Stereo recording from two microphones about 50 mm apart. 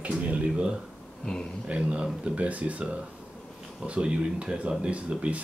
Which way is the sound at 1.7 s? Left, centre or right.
Right.